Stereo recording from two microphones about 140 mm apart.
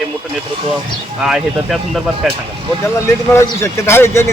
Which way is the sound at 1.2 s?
Centre (ahead or behind).